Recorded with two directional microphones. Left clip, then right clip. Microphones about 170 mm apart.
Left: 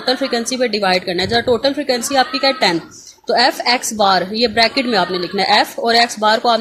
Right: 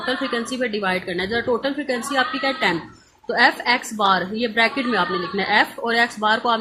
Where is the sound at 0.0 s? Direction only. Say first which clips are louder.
Left 6 dB; 40° left (ahead or behind).